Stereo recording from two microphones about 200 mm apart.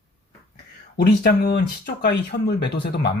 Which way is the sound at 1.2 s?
50° left (ahead or behind).